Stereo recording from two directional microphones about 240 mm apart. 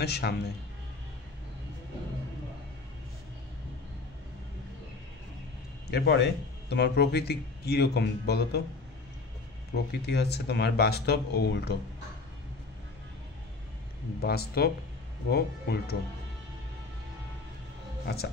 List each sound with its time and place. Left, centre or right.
0.0 s speech: left
5.9 s speech: left
9.8 s speech: left
14.2 s speech: left
18.0 s speech: left